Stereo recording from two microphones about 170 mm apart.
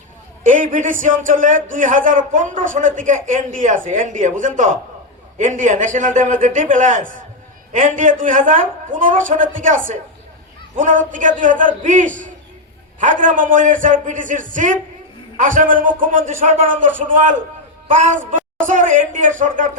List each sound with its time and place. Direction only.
0.4 s a man's voice: 50° right (ahead or behind)